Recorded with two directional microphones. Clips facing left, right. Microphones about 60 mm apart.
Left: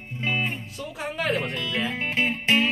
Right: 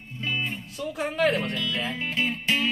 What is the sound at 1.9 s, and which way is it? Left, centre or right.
Music, left.